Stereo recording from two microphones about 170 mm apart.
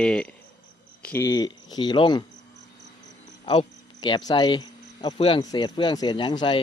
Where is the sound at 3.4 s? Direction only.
30° left (ahead or behind).